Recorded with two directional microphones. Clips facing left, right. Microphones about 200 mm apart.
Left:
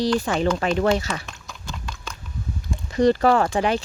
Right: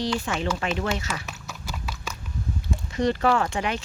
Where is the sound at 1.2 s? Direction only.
5° right (ahead or behind).